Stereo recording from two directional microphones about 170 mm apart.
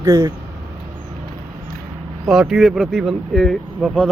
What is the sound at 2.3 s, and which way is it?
Speech, centre (ahead or behind).